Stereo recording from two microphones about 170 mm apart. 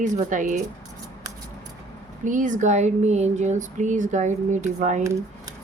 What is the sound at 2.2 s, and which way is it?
Speech, 50° right (ahead or behind).